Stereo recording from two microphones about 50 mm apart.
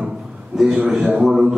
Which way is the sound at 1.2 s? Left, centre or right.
Centre.